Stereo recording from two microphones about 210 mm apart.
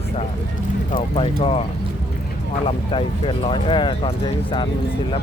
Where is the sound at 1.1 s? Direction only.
30° left (ahead or behind).